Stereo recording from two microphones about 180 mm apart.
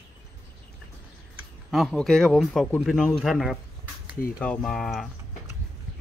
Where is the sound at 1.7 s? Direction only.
Centre (ahead or behind).